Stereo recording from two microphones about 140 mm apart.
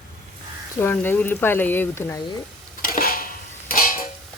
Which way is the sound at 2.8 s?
85° left.